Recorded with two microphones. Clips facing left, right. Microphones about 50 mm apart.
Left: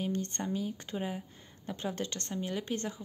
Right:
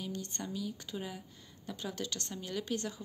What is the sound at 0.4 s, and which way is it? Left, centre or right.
Speech, left.